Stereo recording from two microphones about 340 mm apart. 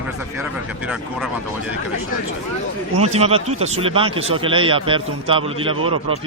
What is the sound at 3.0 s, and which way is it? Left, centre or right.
Speech, centre.